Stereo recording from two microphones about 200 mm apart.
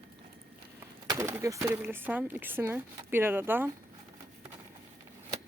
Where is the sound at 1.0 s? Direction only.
15° right (ahead or behind).